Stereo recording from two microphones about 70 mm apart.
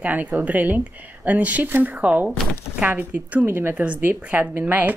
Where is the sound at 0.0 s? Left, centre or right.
Right.